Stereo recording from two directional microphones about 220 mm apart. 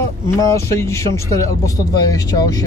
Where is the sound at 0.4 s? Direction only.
15° left (ahead or behind).